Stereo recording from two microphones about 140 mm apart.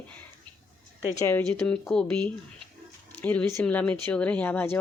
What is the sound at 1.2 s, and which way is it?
Speech, 20° left (ahead or behind).